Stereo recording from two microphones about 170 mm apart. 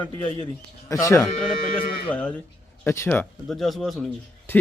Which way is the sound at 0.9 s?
20° left (ahead or behind).